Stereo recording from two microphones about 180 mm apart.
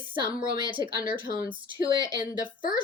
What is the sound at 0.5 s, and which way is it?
Speech, 25° right (ahead or behind).